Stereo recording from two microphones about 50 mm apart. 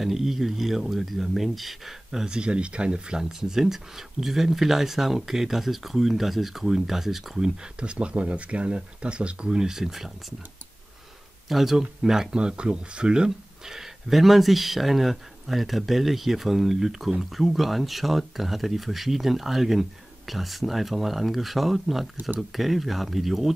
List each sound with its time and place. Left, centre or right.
0.0 s speech: centre
2.3 s speech: centre
7.8 s speech: right
11.4 s speech: centre